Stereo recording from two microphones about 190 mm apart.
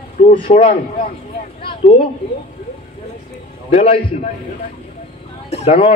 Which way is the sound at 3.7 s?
30° left (ahead or behind).